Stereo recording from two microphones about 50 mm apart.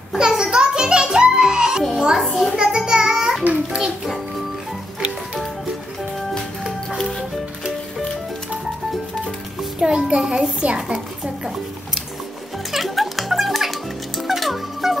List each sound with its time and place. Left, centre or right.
0.2 s music: centre
2.0 s a child's voice: centre
2.5 s music: centre
7.0 s music: centre
9.8 s music: centre
10.6 s a child's voice: right
12.7 s music: centre